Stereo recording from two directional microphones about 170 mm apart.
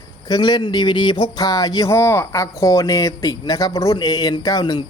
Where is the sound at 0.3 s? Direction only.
25° left (ahead or behind).